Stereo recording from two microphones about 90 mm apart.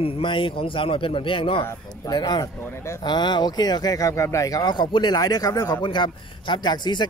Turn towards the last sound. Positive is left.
turn(degrees=55)  # may be behind; listen again after turning